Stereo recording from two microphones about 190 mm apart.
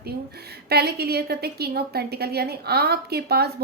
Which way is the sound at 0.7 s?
55° right (ahead or behind).